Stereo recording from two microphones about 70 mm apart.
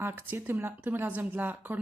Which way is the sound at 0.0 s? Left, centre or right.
Right.